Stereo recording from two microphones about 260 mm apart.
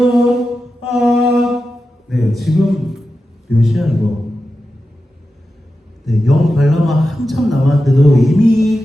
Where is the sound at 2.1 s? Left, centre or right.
Centre.